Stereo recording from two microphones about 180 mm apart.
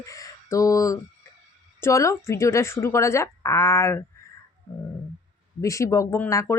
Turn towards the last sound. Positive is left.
turn(degrees=15)  # may be behind; listen again after turning